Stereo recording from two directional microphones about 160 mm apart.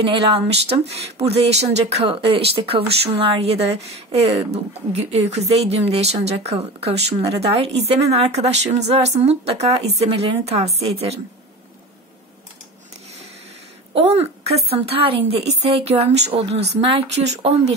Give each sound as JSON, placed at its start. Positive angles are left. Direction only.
{"t": 0.1, "sound": "speech", "side_deg": -40}
{"t": 13.9, "sound": "speech", "side_deg": -40}